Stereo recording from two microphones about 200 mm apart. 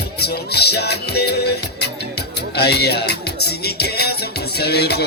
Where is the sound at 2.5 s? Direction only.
55° left (ahead or behind).